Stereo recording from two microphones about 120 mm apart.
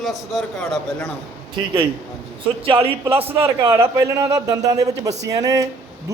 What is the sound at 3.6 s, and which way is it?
Speech, 20° right (ahead or behind).